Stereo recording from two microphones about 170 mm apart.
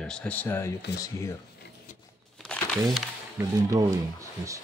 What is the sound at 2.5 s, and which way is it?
Crumpling, 5° left (ahead or behind).